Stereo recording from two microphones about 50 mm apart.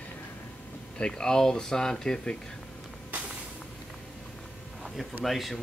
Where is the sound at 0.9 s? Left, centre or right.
Centre.